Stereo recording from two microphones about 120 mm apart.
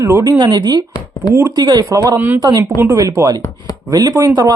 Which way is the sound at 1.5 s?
35° right (ahead or behind).